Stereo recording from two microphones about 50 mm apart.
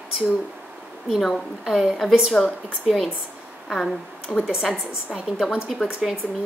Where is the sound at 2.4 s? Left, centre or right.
Centre.